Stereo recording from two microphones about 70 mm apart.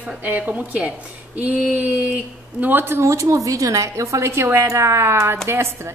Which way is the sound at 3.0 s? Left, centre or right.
Right.